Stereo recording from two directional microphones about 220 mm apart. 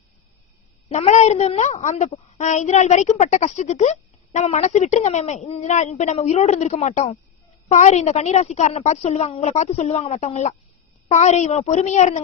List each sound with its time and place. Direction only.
0.9 s a woman's voice: 30° left (ahead or behind)